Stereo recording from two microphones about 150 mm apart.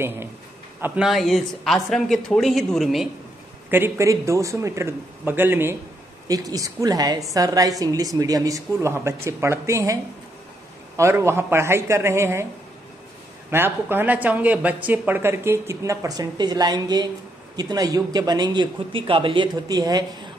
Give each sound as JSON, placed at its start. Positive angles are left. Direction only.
{"t": 0.7, "sound": "a man's voice", "side_deg": -15}
{"t": 1.0, "sound": "speech", "side_deg": 0}
{"t": 3.7, "sound": "a man's voice", "side_deg": -15}
{"t": 11.0, "sound": "a man's voice", "side_deg": -15}
{"t": 13.5, "sound": "a man's voice", "side_deg": -15}